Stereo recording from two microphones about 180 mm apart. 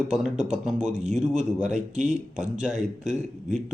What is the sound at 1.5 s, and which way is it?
A man's voice, 5° right (ahead or behind).